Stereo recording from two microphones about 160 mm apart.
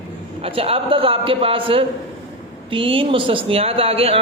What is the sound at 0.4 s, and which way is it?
A man's voice, 35° right (ahead or behind).